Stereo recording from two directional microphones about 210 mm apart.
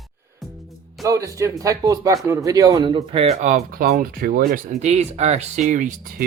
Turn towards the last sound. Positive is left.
turn(degrees=-35)  # may be behind; listen again after turning